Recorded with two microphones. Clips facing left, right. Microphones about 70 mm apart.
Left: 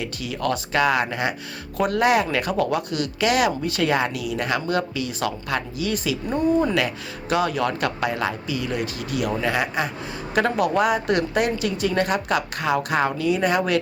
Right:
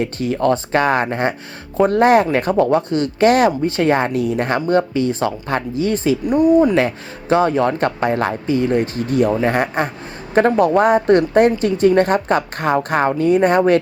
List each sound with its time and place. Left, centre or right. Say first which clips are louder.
0.0 s a woman's voice: right 9 dB; right
6.2 s speech: right 8 dB; centre
6.7 s a woman's voice: right 6 dB; right